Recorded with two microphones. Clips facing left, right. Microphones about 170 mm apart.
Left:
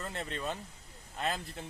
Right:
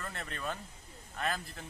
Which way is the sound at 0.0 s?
25° left (ahead or behind).